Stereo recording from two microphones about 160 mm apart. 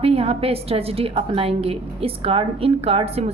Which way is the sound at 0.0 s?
40° right (ahead or behind).